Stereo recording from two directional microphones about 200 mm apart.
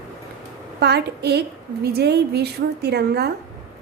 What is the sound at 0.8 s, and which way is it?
A woman's voice, 55° right (ahead or behind).